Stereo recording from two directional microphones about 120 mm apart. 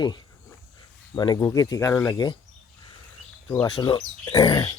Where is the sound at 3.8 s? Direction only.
35° left (ahead or behind).